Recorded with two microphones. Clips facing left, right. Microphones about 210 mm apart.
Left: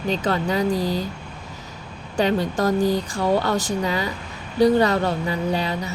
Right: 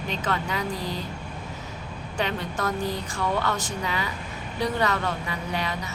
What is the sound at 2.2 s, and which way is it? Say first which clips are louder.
Speech: left 8 dB; 35° left (ahead or behind).